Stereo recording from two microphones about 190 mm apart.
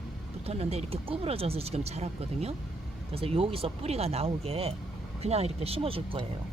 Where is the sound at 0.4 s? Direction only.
30° right (ahead or behind).